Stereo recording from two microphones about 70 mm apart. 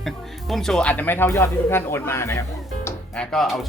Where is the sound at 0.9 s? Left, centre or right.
Left.